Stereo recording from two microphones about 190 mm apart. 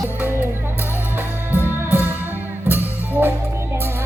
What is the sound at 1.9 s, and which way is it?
Music, 10° right (ahead or behind).